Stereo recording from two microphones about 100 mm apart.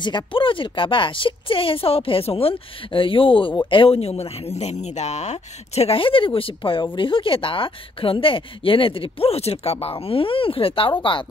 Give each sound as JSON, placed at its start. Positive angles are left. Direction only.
{"t": 0.0, "sound": "speech", "side_deg": 55}